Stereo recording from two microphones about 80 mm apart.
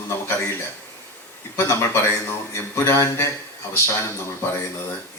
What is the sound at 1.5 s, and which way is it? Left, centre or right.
A man's voice, left.